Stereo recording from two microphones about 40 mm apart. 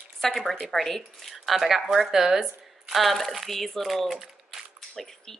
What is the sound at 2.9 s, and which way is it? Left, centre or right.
Speech, centre.